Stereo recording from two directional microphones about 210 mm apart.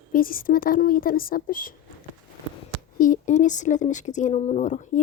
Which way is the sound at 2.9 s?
40° left (ahead or behind).